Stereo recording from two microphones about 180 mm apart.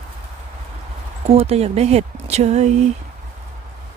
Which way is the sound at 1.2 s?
35° right (ahead or behind).